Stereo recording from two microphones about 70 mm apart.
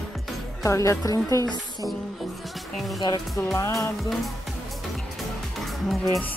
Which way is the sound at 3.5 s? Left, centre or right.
Left.